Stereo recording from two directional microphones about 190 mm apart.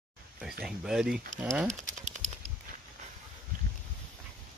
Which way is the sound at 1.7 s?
40° right (ahead or behind).